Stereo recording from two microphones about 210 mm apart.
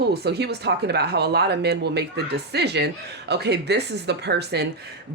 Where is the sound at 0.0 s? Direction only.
50° right (ahead or behind).